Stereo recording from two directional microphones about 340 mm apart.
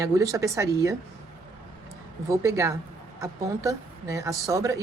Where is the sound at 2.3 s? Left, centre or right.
Centre.